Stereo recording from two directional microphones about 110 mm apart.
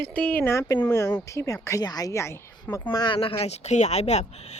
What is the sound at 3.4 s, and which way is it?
Speech, 80° left.